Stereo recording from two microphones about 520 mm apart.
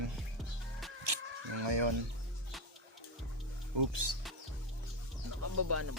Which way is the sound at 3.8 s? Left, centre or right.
Right.